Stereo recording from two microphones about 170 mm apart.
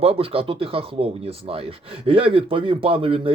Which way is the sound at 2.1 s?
30° right (ahead or behind).